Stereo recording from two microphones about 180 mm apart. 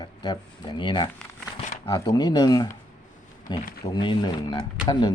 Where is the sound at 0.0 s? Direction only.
25° left (ahead or behind).